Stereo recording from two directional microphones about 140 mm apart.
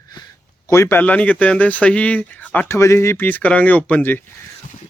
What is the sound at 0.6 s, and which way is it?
Speech, 20° left (ahead or behind).